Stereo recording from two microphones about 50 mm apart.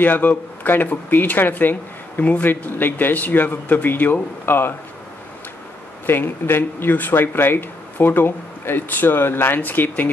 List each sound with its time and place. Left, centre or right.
0.0 s speech: left
6.0 s speech: left